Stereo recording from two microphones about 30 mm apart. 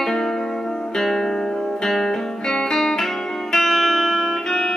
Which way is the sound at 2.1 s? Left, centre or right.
Centre.